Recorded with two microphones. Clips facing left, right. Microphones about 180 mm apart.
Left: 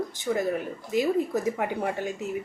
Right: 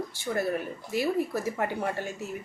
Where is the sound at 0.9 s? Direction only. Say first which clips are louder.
Left 3 dB; 20° left (ahead or behind).